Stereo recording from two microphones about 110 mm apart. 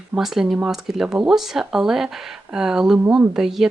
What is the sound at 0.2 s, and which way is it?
Speech, 5° right (ahead or behind).